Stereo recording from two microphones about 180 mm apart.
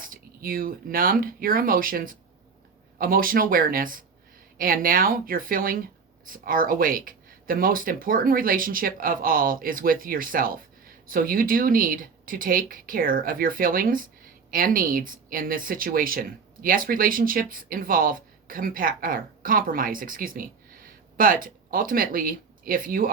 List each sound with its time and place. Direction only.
0.0 s speech: 50° right (ahead or behind)